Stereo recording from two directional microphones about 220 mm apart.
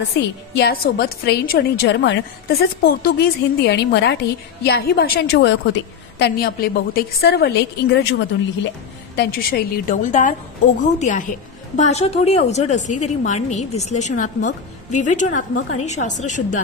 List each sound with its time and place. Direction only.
0.6 s a woman's voice: 45° left (ahead or behind)